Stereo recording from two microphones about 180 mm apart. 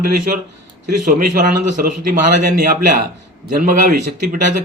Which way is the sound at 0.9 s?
45° right (ahead or behind).